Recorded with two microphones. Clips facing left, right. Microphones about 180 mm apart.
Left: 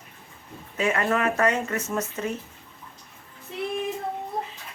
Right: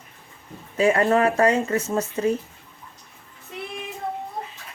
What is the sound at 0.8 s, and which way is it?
Speech, 30° right (ahead or behind).